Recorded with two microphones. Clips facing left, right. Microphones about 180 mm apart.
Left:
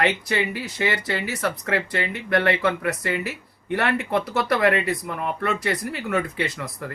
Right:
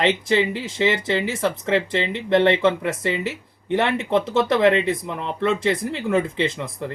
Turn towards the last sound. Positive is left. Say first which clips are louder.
# right 4 dB
turn(degrees=-20)  # may be behind; listen again after turning